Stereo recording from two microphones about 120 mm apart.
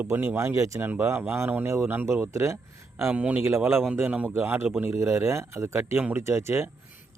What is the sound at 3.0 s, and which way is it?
A man's voice, 10° right (ahead or behind).